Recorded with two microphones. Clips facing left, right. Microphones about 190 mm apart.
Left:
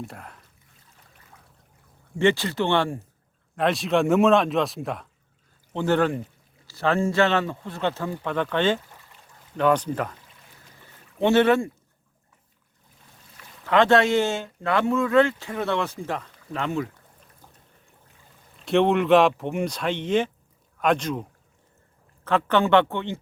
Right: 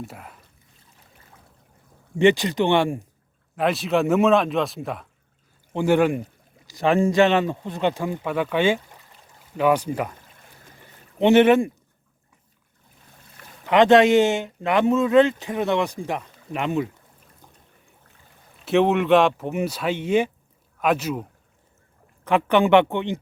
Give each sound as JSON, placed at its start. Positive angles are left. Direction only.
{"t": 0.0, "sound": "speech", "side_deg": -5}
{"t": 2.1, "sound": "speech", "side_deg": -15}
{"t": 3.5, "sound": "speech", "side_deg": -5}
{"t": 5.7, "sound": "speech", "side_deg": -10}
{"t": 10.8, "sound": "boat", "side_deg": -20}
{"t": 13.7, "sound": "speech", "side_deg": -15}
{"t": 18.6, "sound": "speech", "side_deg": -5}